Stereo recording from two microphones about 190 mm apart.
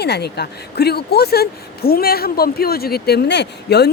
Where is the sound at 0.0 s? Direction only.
60° left (ahead or behind).